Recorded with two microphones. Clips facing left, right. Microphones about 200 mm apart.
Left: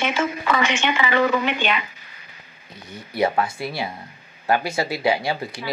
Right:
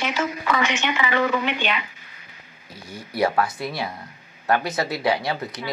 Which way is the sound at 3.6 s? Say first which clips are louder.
Left 1 dB; 5° left (ahead or behind).